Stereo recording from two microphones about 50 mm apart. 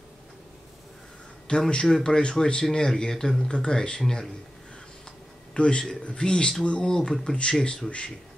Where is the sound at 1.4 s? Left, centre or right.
Centre.